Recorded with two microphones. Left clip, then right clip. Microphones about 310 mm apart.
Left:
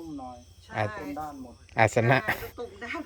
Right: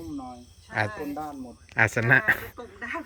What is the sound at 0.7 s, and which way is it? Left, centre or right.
Speech, centre.